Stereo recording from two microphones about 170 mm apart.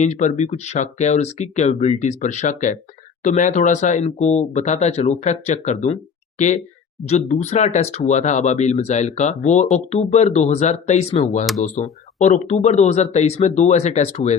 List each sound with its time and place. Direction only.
0.0 s speech: 45° left (ahead or behind)
7.1 s speech: 40° left (ahead or behind)